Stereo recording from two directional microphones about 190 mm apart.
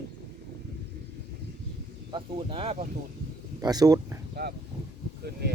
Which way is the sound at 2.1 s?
25° right (ahead or behind).